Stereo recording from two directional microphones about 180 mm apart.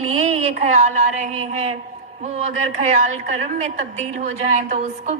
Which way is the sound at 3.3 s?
35° right (ahead or behind).